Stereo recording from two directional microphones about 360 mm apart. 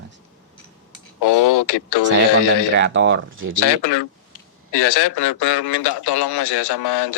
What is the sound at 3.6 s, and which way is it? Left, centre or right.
A man's voice, left.